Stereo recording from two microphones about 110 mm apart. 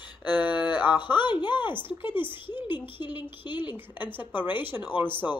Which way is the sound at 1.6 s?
20° right (ahead or behind).